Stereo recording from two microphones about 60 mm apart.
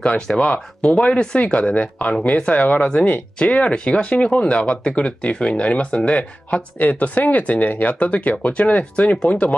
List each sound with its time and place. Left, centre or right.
0.0 s speech: centre